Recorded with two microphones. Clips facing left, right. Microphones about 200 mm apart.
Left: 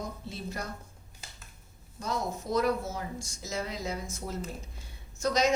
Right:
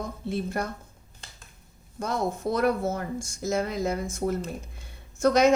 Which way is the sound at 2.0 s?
55° right (ahead or behind).